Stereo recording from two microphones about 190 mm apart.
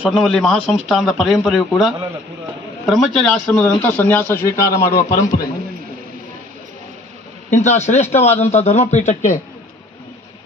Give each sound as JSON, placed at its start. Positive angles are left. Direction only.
{"t": 0.0, "sound": "a man's voice", "side_deg": -5}
{"t": 7.5, "sound": "speech", "side_deg": 35}